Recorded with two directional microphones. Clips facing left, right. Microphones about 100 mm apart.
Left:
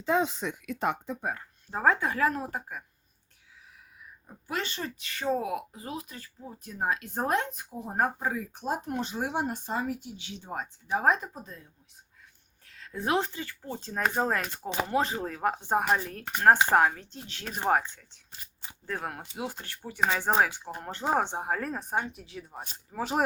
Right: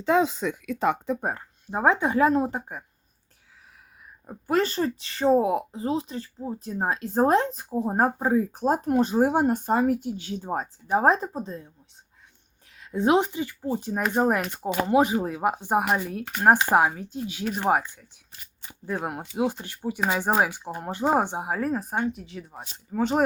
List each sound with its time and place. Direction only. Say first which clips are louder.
0.1 s speech: right 5 dB; 90° right
1.7 s speech: right 4 dB; 20° right (ahead or behind)
4.3 s speech: right 10 dB; 45° right (ahead or behind)
12.7 s speech: right 7 dB; 20° right (ahead or behind)
18.7 s speech: right 5 dB; 15° right (ahead or behind); by 23.2 s centre (ahead or behind)